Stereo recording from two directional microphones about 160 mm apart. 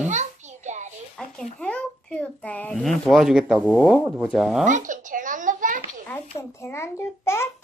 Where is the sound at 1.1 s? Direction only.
5° left (ahead or behind).